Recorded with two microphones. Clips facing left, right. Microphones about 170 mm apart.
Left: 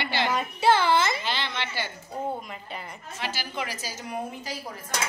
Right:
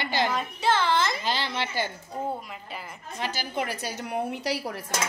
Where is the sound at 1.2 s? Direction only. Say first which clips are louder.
Right 2 dB; 35° right (ahead or behind).